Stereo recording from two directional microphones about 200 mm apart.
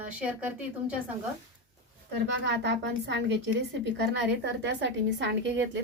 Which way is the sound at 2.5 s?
60° right (ahead or behind).